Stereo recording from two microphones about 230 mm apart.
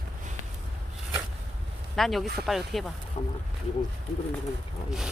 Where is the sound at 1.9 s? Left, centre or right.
Centre.